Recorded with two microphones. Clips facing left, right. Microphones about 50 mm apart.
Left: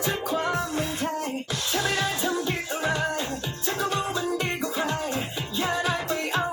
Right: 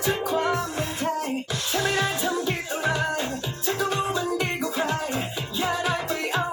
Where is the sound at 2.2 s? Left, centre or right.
Centre.